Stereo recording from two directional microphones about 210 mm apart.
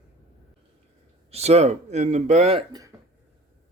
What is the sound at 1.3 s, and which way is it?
Speech, 30° right (ahead or behind).